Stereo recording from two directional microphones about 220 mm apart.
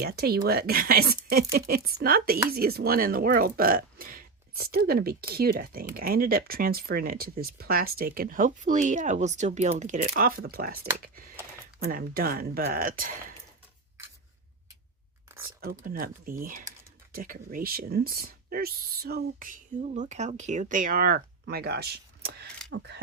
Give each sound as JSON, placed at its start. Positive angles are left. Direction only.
{"t": 0.0, "sound": "speech", "side_deg": -45}
{"t": 15.6, "sound": "speech", "side_deg": -40}